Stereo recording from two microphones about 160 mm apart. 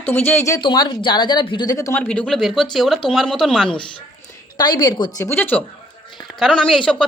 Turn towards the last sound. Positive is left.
turn(degrees=5)  # may be behind; listen again after turning